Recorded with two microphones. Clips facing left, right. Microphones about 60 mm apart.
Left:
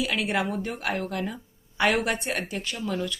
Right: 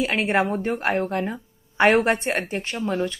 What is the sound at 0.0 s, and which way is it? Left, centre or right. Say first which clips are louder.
Speech: right 5 dB; right.